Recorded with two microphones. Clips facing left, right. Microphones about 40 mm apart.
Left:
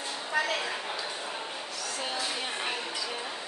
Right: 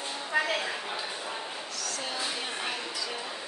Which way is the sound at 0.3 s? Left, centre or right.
Centre.